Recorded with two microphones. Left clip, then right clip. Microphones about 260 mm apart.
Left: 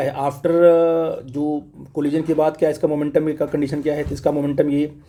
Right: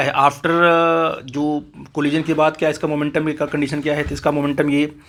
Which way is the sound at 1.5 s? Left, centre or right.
Right.